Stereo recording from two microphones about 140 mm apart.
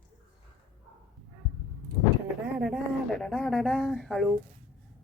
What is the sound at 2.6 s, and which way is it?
Speech, centre (ahead or behind).